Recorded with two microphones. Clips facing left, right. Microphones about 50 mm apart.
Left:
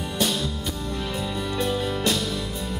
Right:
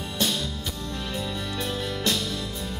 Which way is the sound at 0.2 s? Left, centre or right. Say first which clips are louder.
Left 2 dB; centre.